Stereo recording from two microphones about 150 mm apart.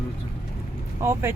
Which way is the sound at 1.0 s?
15° right (ahead or behind).